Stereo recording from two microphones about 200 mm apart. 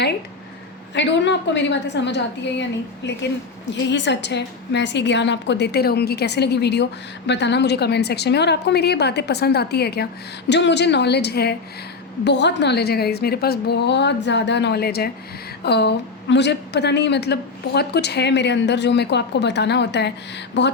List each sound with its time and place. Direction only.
0.9 s a woman's voice: 60° left (ahead or behind)
3.8 s a woman's voice: 60° left (ahead or behind)